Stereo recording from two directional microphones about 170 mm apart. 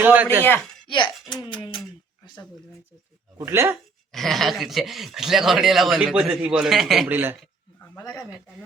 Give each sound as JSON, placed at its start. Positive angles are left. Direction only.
{"t": 0.0, "sound": "speech", "side_deg": -10}
{"t": 0.9, "sound": "speech", "side_deg": 30}
{"t": 3.3, "sound": "speech", "side_deg": -15}
{"t": 4.1, "sound": "speech", "side_deg": 0}
{"t": 7.9, "sound": "speech", "side_deg": 15}